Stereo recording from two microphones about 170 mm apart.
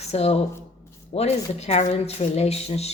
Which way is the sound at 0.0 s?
40° left (ahead or behind).